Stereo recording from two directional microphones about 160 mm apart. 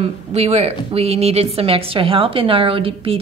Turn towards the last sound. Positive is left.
turn(degrees=-35)  # may be behind; listen again after turning